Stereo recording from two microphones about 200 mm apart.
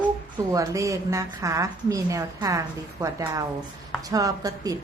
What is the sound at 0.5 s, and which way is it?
A woman's voice, 15° right (ahead or behind).